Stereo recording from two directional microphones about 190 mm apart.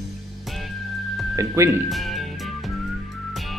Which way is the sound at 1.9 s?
Centre (ahead or behind).